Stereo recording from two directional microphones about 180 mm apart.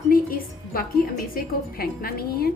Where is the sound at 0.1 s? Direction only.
55° left (ahead or behind).